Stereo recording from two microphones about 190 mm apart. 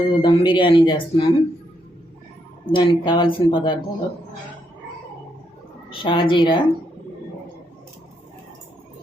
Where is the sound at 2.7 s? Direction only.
25° left (ahead or behind).